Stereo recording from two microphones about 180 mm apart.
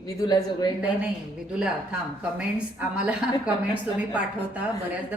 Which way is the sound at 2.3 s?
5° right (ahead or behind).